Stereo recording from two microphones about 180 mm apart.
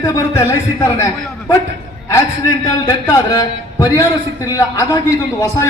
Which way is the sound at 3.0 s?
15° left (ahead or behind).